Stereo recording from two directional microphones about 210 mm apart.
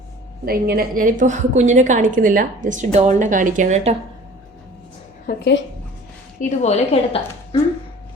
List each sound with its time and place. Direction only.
0.4 s a woman's voice: 45° right (ahead or behind)
5.2 s a woman's voice: 45° left (ahead or behind)
6.4 s a woman's voice: 35° left (ahead or behind)